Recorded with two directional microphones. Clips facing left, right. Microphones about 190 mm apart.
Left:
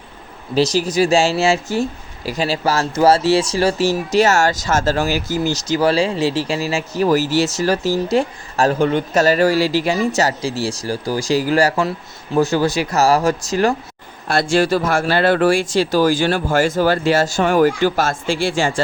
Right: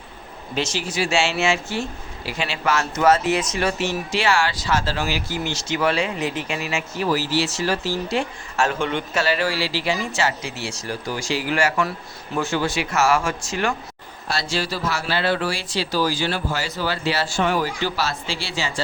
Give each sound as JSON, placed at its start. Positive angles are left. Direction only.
{"t": 0.5, "sound": "speech", "side_deg": 35}
{"t": 14.3, "sound": "speech", "side_deg": 50}